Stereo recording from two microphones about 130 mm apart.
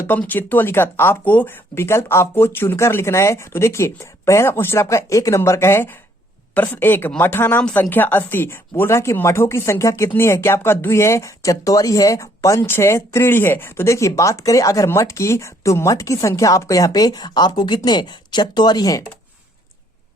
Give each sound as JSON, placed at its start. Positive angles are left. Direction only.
{"t": 0.0, "sound": "a woman's voice", "side_deg": 15}